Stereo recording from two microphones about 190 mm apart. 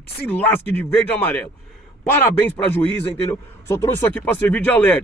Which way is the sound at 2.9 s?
15° left (ahead or behind).